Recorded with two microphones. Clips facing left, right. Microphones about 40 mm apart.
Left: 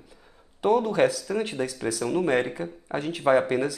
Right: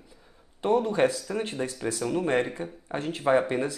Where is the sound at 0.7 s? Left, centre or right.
Left.